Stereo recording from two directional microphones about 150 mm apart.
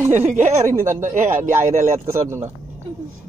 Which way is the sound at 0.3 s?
55° right (ahead or behind).